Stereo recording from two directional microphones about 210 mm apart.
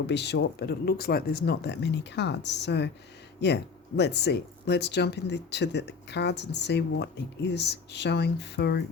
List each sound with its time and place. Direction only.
0.1 s speech: 55° left (ahead or behind)